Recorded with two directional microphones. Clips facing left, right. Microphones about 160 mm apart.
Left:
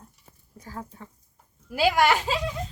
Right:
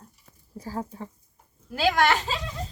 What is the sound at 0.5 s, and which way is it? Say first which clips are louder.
Speech: right 6 dB; 30° right (ahead or behind).